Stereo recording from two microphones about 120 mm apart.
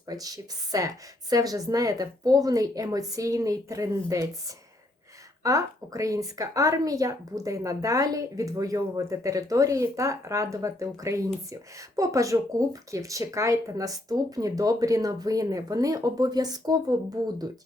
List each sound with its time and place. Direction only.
0.1 s a woman's voice: 30° right (ahead or behind)